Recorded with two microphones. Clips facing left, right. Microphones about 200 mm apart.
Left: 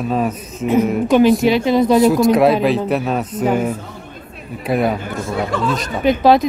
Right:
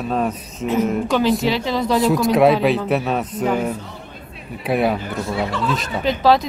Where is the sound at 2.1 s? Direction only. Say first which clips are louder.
Left 2 dB; centre (ahead or behind).